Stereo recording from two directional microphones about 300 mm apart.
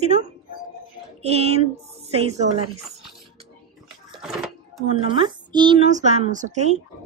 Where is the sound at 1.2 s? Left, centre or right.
Right.